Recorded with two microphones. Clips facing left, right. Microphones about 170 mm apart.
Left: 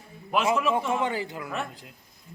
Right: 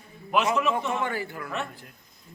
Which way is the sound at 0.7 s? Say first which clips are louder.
Left 2 dB; 20° left (ahead or behind).